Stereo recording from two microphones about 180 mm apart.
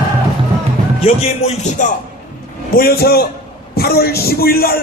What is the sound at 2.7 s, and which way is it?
Speech, 55° left (ahead or behind).